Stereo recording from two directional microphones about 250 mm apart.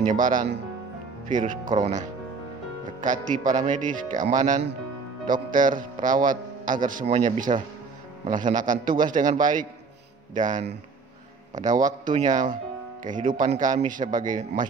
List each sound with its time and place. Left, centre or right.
0.0 s a man's voice: right